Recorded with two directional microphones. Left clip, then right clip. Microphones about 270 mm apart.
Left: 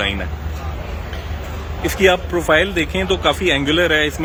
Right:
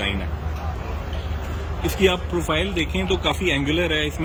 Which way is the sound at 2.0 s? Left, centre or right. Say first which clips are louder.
Left 6 dB; centre.